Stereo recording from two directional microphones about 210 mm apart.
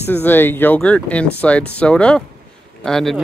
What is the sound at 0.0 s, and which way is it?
Speech, 10° left (ahead or behind).